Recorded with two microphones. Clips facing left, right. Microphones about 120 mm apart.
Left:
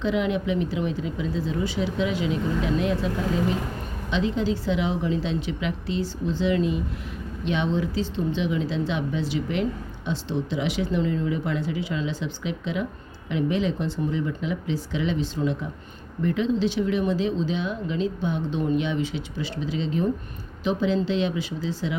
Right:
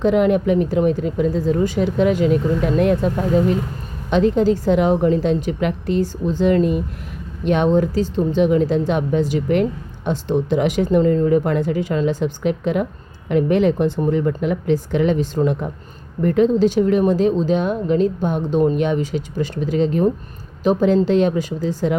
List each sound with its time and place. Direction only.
0.0 s speech: 50° right (ahead or behind)